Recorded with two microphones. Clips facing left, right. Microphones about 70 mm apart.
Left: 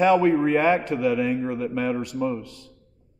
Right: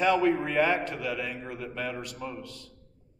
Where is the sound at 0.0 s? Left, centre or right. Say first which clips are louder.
Left 6 dB; left.